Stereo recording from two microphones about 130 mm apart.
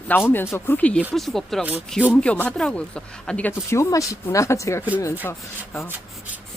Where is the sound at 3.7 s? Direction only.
25° left (ahead or behind).